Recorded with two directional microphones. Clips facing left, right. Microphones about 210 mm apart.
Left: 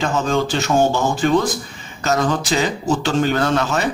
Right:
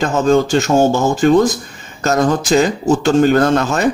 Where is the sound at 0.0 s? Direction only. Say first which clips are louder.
Right 6 dB; 45° right (ahead or behind).